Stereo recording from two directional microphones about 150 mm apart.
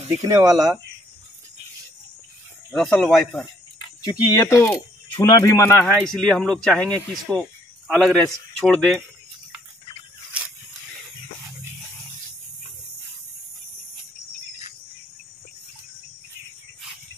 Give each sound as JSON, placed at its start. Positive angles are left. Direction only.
{"t": 0.2, "sound": "speech", "side_deg": -20}
{"t": 2.7, "sound": "speech", "side_deg": 5}
{"t": 4.0, "sound": "speech", "side_deg": 25}
{"t": 6.0, "sound": "speech", "side_deg": 5}